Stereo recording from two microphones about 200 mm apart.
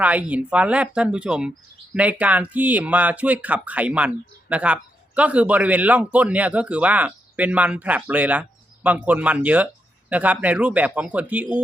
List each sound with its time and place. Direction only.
0.0 s speech: 5° right (ahead or behind)